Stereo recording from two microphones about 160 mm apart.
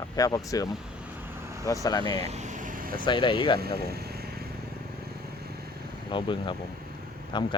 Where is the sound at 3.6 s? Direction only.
75° right (ahead or behind).